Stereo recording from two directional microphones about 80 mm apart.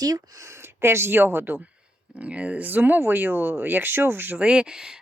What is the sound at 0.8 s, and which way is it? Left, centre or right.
Speech, right.